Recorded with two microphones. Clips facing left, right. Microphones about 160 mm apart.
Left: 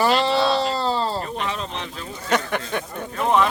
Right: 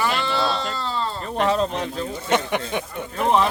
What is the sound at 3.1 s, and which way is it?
Speech, 30° right (ahead or behind).